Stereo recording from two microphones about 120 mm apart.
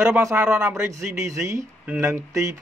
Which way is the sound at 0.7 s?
25° right (ahead or behind).